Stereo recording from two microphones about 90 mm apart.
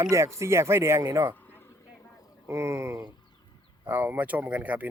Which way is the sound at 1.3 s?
20° left (ahead or behind).